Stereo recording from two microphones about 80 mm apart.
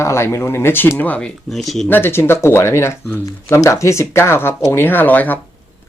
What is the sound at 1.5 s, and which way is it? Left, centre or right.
Speech, centre.